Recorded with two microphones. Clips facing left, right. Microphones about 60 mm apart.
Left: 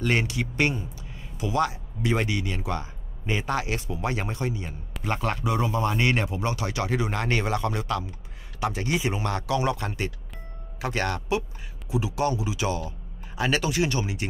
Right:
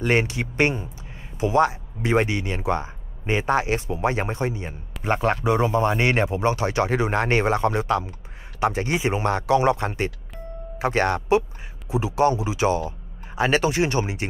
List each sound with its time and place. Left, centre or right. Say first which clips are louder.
0.0 s speech: right 4 dB; right